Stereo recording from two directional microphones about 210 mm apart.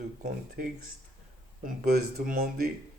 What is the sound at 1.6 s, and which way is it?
Mantra, 50° right (ahead or behind).